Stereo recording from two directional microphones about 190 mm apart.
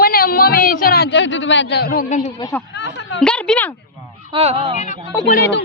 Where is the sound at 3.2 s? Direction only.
5° left (ahead or behind).